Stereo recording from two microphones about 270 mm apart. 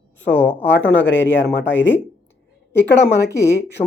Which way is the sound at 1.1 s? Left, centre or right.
Left.